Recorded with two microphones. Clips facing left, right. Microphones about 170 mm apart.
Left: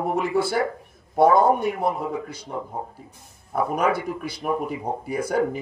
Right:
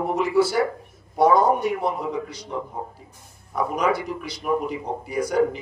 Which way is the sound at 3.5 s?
50° left (ahead or behind).